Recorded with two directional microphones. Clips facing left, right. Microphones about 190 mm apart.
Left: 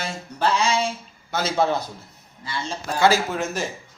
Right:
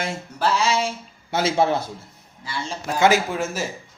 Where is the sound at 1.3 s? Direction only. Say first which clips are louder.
Right 2 dB; 25° right (ahead or behind).